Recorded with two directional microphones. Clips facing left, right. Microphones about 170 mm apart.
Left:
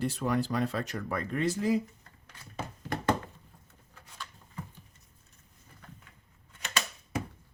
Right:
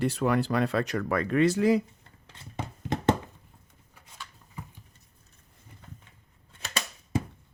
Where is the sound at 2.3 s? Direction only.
25° right (ahead or behind).